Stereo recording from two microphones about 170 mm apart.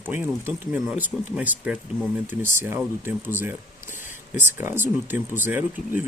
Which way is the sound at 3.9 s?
50° left (ahead or behind).